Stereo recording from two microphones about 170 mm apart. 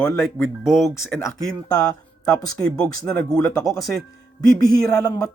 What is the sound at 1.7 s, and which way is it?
Speech, 20° left (ahead or behind).